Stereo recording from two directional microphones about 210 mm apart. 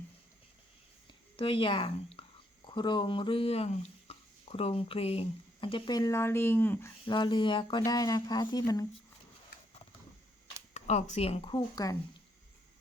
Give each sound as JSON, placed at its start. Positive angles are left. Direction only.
{"t": 1.0, "sound": "a woman's voice", "side_deg": 25}
{"t": 7.0, "sound": "speech", "side_deg": 20}
{"t": 10.8, "sound": "speech", "side_deg": 35}